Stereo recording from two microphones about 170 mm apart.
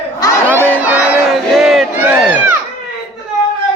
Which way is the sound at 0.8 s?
5° right (ahead or behind).